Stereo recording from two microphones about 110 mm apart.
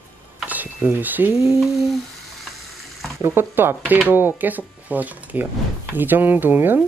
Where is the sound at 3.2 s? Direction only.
20° right (ahead or behind).